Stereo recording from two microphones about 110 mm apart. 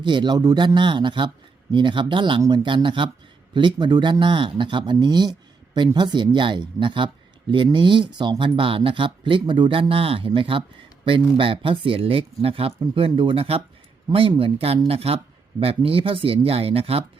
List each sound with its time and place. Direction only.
0.0 s speech: 45° right (ahead or behind); by 12.7 s 60° right (ahead or behind)
12.8 s speech: 45° right (ahead or behind)